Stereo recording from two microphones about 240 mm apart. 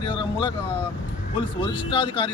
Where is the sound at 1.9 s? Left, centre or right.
Left.